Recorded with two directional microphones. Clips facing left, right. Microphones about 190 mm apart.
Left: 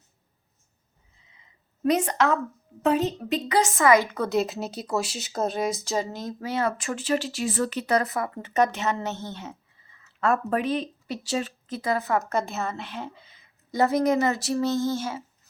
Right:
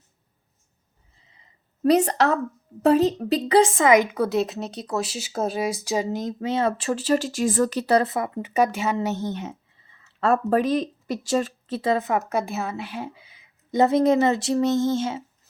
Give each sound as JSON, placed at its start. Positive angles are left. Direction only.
{"t": 1.3, "sound": "a sound", "side_deg": -35}
{"t": 2.8, "sound": "a woman's voice", "side_deg": -40}
{"t": 4.3, "sound": "speech", "side_deg": 0}
{"t": 10.2, "sound": "a woman's voice", "side_deg": -35}
{"t": 11.7, "sound": "speech", "side_deg": -30}
{"t": 13.7, "sound": "speech", "side_deg": -20}